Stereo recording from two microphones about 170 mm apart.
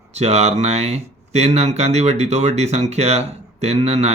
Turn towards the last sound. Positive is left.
turn(degrees=-40)  # may be behind; listen again after turning